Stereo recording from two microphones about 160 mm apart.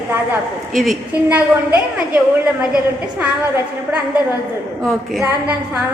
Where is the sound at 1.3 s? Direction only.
10° right (ahead or behind).